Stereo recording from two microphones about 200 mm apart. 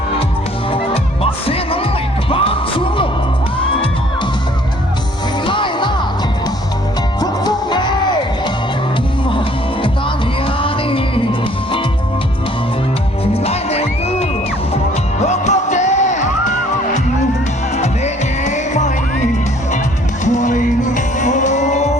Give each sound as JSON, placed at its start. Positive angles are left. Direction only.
{"t": 1.2, "sound": "music", "side_deg": 30}
{"t": 5.5, "sound": "music", "side_deg": 25}
{"t": 7.2, "sound": "music", "side_deg": 20}
{"t": 10.4, "sound": "music", "side_deg": 25}
{"t": 13.3, "sound": "music", "side_deg": 30}
{"t": 15.3, "sound": "music", "side_deg": 35}
{"t": 17.7, "sound": "music", "side_deg": 35}